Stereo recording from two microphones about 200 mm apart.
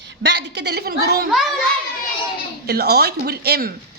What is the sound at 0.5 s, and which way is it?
Speech, 55° right (ahead or behind).